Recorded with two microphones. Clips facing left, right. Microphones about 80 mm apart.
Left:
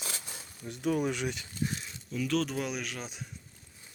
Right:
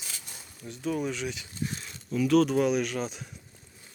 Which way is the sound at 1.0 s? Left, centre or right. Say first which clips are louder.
Even; left.